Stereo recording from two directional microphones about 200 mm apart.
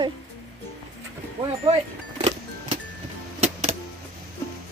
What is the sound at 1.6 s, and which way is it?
Music, 30° right (ahead or behind).